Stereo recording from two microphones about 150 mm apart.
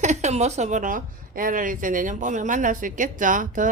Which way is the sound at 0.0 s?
50° right (ahead or behind).